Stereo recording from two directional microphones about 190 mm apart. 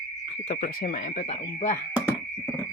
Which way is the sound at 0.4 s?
40° left (ahead or behind).